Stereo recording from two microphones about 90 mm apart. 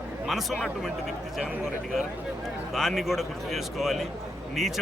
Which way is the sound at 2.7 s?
Centre (ahead or behind).